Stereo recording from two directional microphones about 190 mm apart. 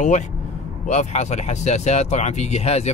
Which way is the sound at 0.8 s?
35° left (ahead or behind).